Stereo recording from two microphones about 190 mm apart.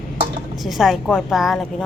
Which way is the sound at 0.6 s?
Centre (ahead or behind).